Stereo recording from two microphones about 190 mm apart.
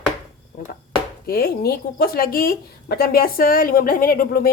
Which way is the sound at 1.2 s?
55° left (ahead or behind).